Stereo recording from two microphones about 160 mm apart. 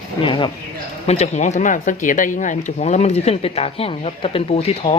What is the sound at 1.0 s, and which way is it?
Speech, 45° left (ahead or behind).